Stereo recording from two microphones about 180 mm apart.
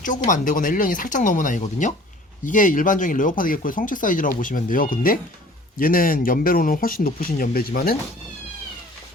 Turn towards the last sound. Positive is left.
turn(degrees=55)  # may be behind; listen again after turning